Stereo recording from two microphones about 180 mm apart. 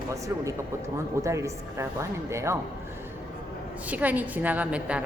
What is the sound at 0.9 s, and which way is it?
A woman's voice, 15° right (ahead or behind).